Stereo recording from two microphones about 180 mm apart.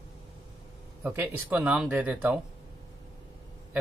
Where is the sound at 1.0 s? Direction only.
10° right (ahead or behind).